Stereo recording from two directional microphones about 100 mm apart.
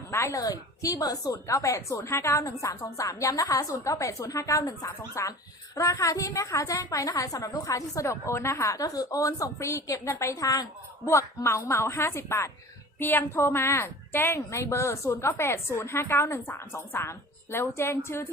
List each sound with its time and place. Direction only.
0.1 s a woman's voice: 30° left (ahead or behind)